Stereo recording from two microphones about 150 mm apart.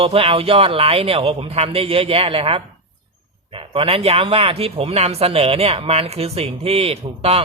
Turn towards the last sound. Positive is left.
turn(degrees=-40)  # may be behind; listen again after turning